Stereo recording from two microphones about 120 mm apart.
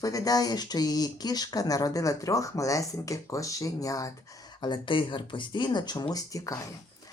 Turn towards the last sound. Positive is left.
turn(degrees=30)  # may be behind; listen again after turning